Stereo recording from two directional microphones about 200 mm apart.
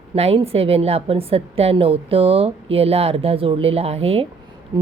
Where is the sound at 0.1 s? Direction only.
30° right (ahead or behind).